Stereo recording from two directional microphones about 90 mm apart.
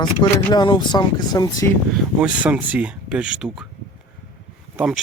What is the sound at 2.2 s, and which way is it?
Speech, 15° right (ahead or behind).